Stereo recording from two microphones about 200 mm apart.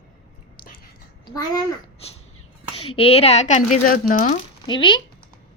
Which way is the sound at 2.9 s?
30° left (ahead or behind).